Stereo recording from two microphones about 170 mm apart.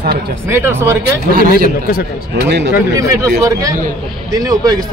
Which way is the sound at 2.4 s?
90° right.